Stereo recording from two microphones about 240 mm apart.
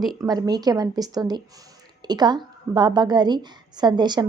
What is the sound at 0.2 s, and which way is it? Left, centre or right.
A woman's voice, centre.